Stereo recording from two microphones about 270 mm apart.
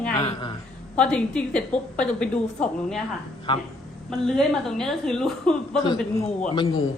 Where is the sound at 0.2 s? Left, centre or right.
Centre.